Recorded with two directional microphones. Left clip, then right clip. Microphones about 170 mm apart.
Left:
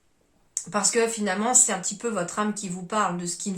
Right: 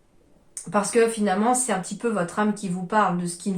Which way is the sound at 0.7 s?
15° left (ahead or behind).